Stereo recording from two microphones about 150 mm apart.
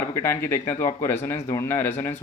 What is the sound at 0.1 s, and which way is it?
Speech, 20° left (ahead or behind).